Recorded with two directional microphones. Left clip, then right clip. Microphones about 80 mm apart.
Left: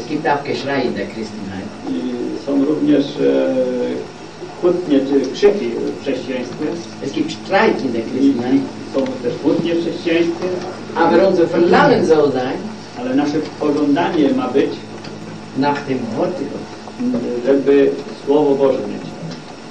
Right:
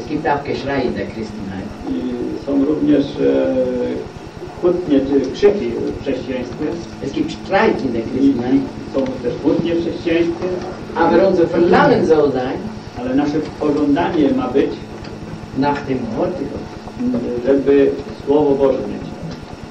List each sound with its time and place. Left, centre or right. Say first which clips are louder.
0.1 s a man's voice: left 1 dB; left